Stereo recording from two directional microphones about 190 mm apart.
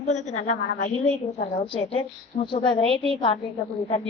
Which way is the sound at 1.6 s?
25° left (ahead or behind).